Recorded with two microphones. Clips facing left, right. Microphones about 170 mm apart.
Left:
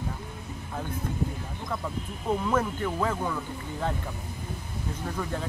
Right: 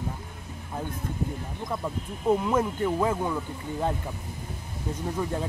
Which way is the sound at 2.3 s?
20° right (ahead or behind).